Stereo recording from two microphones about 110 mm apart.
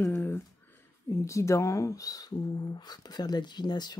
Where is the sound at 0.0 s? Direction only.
20° left (ahead or behind).